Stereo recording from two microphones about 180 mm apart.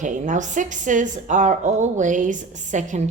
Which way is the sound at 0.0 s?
45° right (ahead or behind).